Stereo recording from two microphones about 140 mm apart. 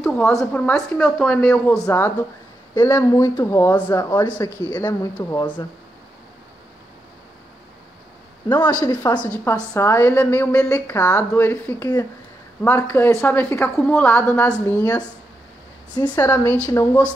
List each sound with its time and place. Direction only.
0.0 s a woman's voice: 10° left (ahead or behind)
1.9 s a woman's voice: 15° left (ahead or behind)
8.8 s speech: 25° left (ahead or behind)
9.2 s a woman's voice: 15° left (ahead or behind)
16.2 s a woman's voice: 15° left (ahead or behind)